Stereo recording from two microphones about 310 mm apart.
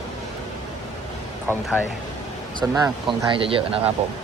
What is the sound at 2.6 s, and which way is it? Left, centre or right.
Speech, centre.